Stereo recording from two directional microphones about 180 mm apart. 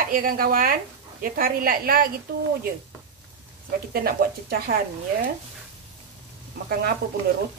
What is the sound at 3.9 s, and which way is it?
Speech, 55° right (ahead or behind).